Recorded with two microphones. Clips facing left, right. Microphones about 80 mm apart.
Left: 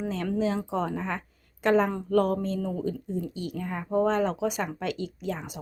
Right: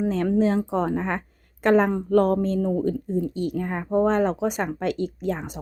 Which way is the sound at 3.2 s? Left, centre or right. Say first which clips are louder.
Right 7 dB; right.